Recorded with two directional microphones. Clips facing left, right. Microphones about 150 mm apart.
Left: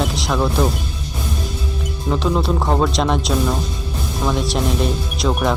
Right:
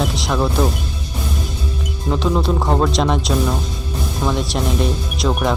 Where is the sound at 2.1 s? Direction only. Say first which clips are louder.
Right 1 dB; centre (ahead or behind).